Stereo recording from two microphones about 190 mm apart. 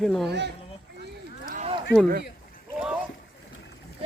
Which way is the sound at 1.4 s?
45° right (ahead or behind).